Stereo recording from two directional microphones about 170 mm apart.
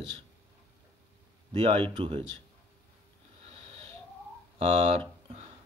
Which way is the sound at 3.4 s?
35° right (ahead or behind).